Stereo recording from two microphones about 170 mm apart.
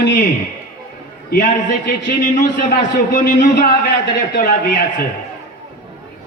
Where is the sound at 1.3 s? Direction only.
55° left (ahead or behind).